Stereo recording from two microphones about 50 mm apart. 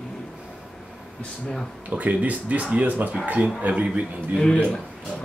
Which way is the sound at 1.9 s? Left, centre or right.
Right.